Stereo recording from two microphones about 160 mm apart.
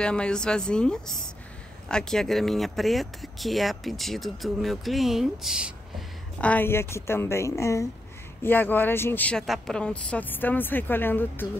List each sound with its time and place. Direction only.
0.0 s speech: 5° left (ahead or behind)
6.3 s speech: 10° left (ahead or behind)